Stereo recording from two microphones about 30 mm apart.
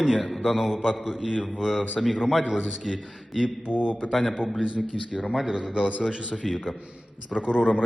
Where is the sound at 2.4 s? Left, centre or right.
Centre.